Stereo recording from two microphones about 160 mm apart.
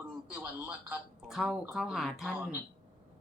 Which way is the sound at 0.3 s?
10° right (ahead or behind).